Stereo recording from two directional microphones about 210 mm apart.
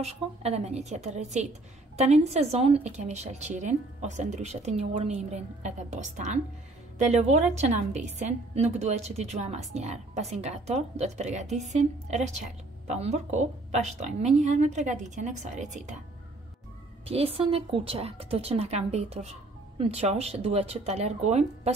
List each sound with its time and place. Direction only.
0.0 s speech: 30° right (ahead or behind)
17.0 s a woman's voice: 30° right (ahead or behind)